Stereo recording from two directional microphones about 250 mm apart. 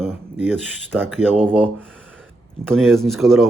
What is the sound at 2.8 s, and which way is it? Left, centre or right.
Speech, centre.